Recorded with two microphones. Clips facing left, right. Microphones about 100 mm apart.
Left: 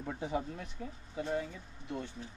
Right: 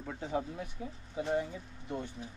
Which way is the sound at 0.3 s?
5° right (ahead or behind).